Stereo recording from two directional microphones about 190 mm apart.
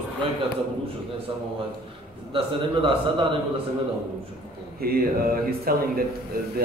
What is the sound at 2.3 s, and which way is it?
A man's voice, 25° right (ahead or behind).